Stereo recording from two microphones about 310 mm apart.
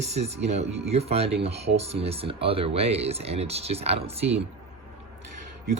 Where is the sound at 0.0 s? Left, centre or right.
Right.